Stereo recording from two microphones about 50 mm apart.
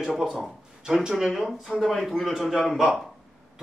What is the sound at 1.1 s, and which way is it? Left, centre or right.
A man's voice, centre.